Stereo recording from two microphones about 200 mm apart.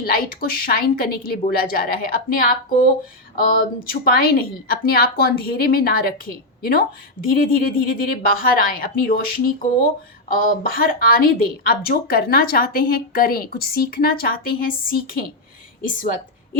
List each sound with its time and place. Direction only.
0.0 s a woman's voice: 45° left (ahead or behind)